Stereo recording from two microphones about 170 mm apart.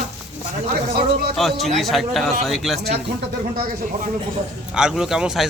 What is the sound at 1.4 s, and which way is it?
Speech, centre (ahead or behind).